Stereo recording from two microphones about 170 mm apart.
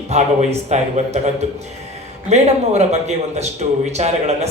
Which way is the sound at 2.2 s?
40° right (ahead or behind).